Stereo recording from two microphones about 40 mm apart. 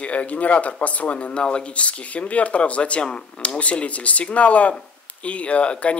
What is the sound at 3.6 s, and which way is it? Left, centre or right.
Speech, left.